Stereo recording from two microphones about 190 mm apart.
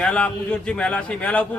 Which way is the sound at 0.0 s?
5° left (ahead or behind).